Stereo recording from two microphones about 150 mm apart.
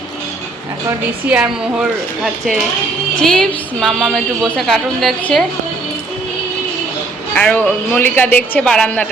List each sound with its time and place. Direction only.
0.9 s a woman's voice: 10° right (ahead or behind)
3.2 s a woman's voice: 5° left (ahead or behind)
7.3 s a woman's voice: 10° left (ahead or behind)